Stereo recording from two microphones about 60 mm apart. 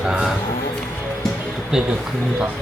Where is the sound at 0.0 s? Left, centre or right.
Centre.